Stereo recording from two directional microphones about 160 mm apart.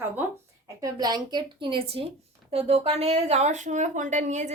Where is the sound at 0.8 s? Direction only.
25° right (ahead or behind); by 4.5 s 50° right (ahead or behind).